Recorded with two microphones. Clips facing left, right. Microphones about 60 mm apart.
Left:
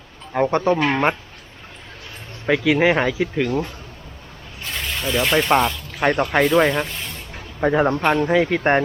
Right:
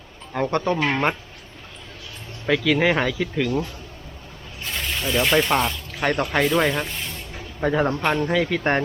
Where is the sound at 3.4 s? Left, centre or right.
Left.